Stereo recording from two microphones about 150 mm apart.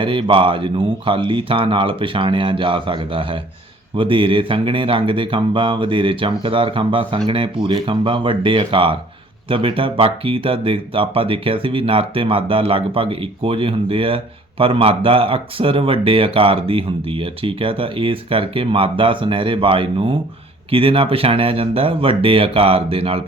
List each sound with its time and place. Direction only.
0.0 s speech: 35° right (ahead or behind)